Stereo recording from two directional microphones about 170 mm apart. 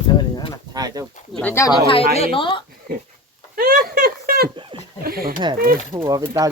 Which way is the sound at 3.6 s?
60° right (ahead or behind).